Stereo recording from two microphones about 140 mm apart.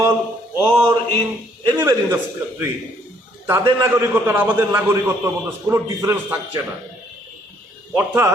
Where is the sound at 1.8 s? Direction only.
15° right (ahead or behind).